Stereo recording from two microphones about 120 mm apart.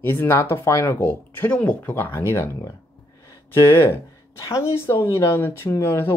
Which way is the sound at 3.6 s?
20° left (ahead or behind).